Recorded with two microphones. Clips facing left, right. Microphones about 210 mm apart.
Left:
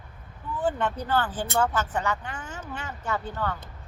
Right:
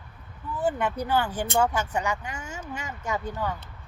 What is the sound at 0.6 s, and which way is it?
Speech, 10° right (ahead or behind).